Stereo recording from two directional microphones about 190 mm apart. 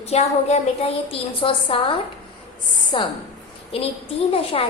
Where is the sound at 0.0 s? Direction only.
35° left (ahead or behind).